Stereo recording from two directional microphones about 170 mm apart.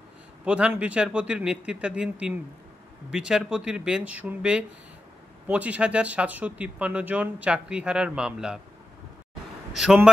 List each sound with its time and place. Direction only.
0.5 s a man's voice: 5° right (ahead or behind)
9.8 s a man's voice: 5° right (ahead or behind)